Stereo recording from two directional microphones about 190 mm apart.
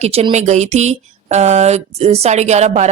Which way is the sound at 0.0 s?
35° right (ahead or behind).